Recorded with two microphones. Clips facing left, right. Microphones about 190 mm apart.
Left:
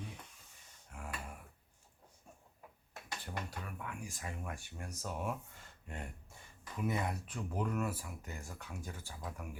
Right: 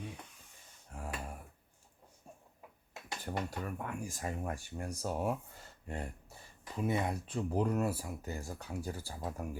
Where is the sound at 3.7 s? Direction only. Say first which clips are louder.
Right 6 dB; 45° right (ahead or behind).